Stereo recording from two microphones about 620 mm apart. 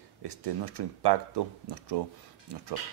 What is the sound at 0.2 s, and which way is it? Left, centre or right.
Speech, right.